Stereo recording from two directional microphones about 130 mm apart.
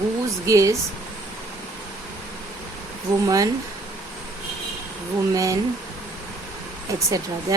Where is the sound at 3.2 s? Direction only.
25° right (ahead or behind).